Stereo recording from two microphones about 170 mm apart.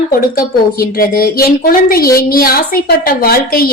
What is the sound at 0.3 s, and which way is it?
A woman's voice, 60° left (ahead or behind).